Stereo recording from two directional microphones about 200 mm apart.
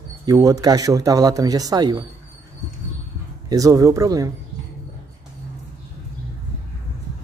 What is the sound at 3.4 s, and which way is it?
Speech, 15° right (ahead or behind).